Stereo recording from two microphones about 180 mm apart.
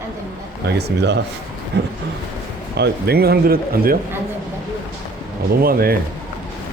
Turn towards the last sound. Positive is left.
turn(degrees=-55)  # may be behind; listen again after turning